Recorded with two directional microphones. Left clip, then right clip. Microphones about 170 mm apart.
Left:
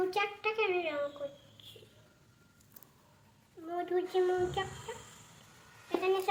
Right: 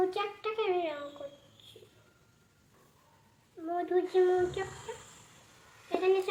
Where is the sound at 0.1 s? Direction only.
Centre (ahead or behind).